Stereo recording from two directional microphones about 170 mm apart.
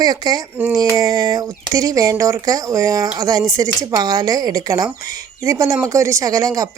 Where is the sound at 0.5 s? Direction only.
10° right (ahead or behind).